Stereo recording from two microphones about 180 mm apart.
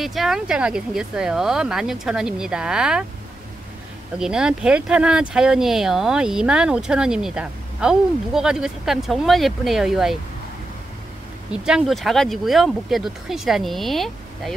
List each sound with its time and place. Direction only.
0.0 s speech: centre (ahead or behind)
4.2 s speech: 5° right (ahead or behind)
11.5 s speech: 5° right (ahead or behind)